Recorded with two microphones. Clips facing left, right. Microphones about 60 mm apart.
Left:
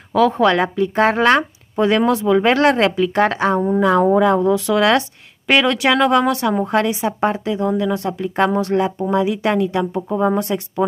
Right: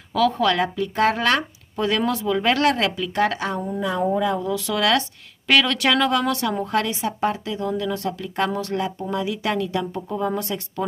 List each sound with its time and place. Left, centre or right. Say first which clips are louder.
0.1 s speech: left 5 dB; left
4.5 s speech: left 6 dB; left